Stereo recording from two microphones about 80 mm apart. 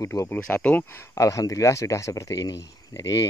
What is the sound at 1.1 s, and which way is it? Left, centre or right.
Speech, left.